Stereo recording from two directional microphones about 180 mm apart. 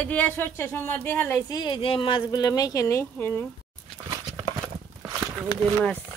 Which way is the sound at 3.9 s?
15° right (ahead or behind).